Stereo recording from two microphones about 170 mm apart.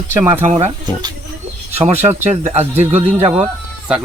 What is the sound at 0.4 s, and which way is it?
Speech, 40° right (ahead or behind).